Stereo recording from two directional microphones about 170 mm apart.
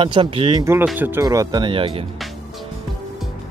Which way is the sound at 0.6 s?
15° right (ahead or behind).